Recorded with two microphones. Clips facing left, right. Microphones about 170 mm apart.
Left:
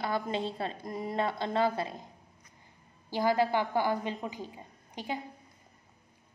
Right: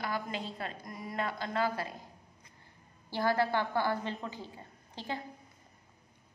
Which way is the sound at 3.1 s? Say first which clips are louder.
Left 3 dB; 15° left (ahead or behind).